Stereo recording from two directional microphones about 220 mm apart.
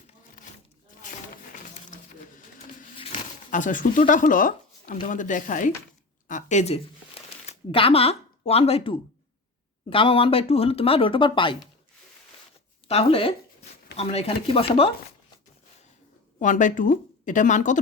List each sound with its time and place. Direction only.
1.9 s a sound: 35° left (ahead or behind)
3.5 s speech: 35° left (ahead or behind)
12.9 s speech: 25° left (ahead or behind)
16.4 s speech: 35° left (ahead or behind)